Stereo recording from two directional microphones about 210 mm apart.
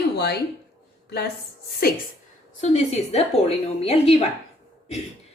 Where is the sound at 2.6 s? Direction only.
30° left (ahead or behind).